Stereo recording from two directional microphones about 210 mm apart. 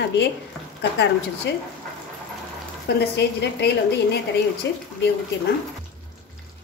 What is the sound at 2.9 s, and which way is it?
A woman's voice, 50° left (ahead or behind).